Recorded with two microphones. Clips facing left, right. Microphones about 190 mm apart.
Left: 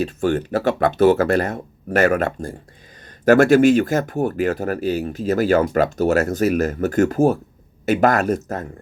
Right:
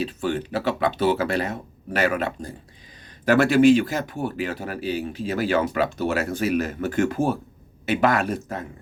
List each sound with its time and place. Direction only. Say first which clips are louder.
0.0 s speech: left 5 dB; 45° left (ahead or behind)